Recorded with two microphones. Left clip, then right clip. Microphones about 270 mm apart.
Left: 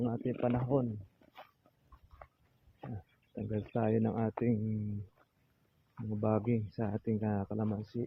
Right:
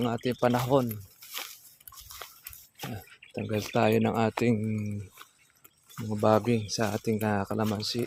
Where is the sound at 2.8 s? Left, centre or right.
Right.